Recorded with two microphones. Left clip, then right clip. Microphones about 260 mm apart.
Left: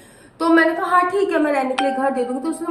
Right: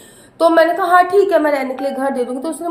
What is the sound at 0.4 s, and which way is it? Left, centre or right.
A woman's voice, centre.